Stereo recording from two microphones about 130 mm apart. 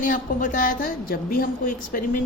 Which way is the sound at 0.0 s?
90° left.